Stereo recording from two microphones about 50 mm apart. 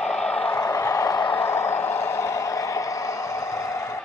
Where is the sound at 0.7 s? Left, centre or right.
Left.